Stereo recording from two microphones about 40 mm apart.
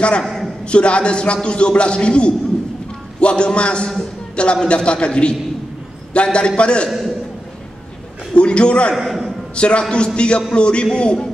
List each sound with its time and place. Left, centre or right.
0.2 s a sound: centre
0.7 s a man's voice: left
8.4 s a man's voice: left
8.9 s a man's voice: centre
9.6 s a man's voice: left